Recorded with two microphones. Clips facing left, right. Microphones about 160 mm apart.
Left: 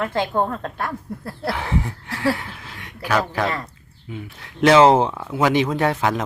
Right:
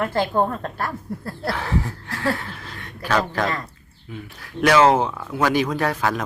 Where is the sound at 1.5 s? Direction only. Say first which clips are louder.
Left 1 dB; 20° left (ahead or behind).